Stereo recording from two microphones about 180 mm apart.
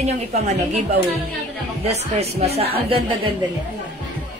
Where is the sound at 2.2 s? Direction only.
35° right (ahead or behind).